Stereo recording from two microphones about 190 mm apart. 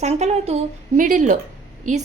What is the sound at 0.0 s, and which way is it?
A woman's voice, 35° right (ahead or behind).